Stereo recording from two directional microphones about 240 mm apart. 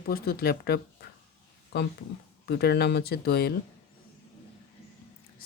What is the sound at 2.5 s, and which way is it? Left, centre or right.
Speech, left.